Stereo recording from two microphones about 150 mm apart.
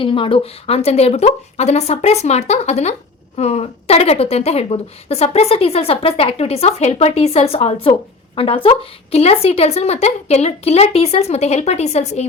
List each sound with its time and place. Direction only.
0.0 s speech: 35° left (ahead or behind)